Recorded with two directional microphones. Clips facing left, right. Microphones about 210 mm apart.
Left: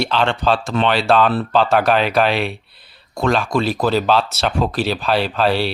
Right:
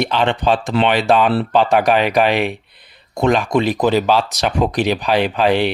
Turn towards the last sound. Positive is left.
turn(degrees=-15)  # may be behind; listen again after turning